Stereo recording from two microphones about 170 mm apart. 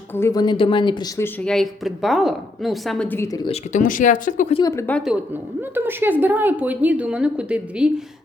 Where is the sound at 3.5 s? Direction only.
45° left (ahead or behind).